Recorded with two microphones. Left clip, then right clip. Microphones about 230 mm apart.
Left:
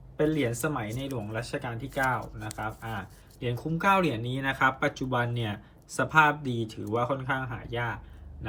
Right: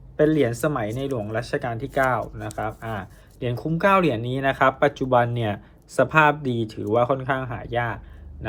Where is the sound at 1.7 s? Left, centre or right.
Right.